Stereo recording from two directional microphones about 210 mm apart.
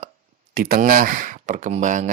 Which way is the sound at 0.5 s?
45° right (ahead or behind).